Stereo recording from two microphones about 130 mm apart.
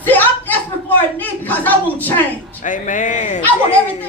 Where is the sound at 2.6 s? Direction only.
85° left.